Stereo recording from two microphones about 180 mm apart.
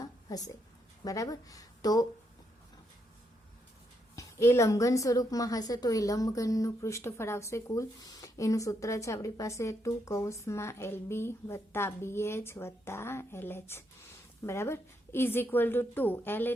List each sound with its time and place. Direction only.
0.0 s a sound: 20° left (ahead or behind)
1.0 s speech: 20° left (ahead or behind)
4.1 s a woman's voice: 15° left (ahead or behind)